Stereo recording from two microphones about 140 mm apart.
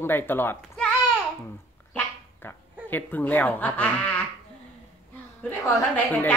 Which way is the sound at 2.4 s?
15° left (ahead or behind).